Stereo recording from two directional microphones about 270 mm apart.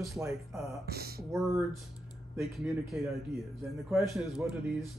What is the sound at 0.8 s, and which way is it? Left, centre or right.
Speech, right.